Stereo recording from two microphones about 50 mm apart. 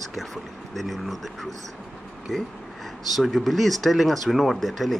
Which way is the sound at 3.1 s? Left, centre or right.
Centre.